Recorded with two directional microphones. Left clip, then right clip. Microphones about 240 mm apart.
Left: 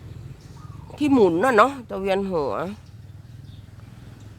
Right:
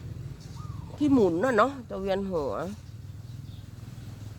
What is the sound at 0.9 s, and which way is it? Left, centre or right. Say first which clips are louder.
Speech: left 5 dB; left.